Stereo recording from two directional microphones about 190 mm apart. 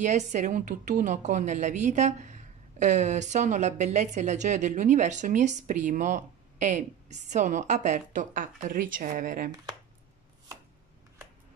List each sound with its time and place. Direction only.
0.0 s a woman's voice: 40° right (ahead or behind)